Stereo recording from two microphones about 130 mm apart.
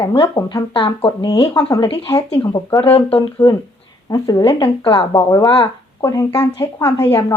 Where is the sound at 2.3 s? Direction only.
45° left (ahead or behind).